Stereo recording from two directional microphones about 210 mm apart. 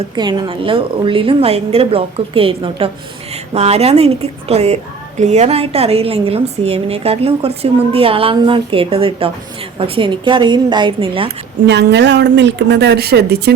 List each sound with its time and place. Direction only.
0.2 s a woman's voice: 20° right (ahead or behind)
11.6 s a woman's voice: 55° right (ahead or behind)